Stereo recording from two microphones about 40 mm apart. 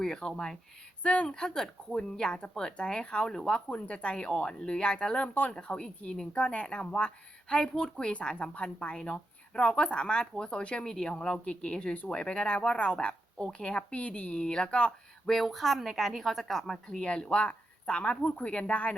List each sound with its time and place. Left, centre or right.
0.0 s speech: centre
1.0 s speech: left
1.3 s speech: centre
7.6 s speech: centre
10.8 s speech: centre
13.9 s speech: left
15.4 s a woman's voice: centre
16.9 s speech: left